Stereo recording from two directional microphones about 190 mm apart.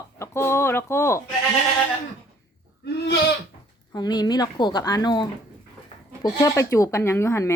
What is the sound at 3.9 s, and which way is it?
Speech, 20° left (ahead or behind).